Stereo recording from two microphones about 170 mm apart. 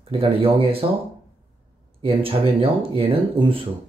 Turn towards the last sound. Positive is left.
turn(degrees=-35)  # may be behind; listen again after turning